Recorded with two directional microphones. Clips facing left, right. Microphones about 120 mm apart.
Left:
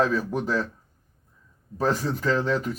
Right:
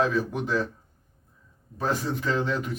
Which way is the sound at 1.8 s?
40° left (ahead or behind).